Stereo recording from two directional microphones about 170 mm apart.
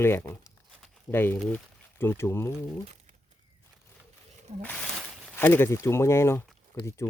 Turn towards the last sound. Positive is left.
turn(degrees=15)  # may be behind; listen again after turning